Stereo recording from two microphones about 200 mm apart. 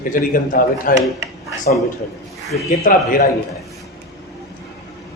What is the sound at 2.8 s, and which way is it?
Speech, 45° left (ahead or behind).